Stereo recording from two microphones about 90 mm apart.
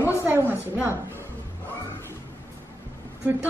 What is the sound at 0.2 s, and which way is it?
A woman's voice, 20° right (ahead or behind).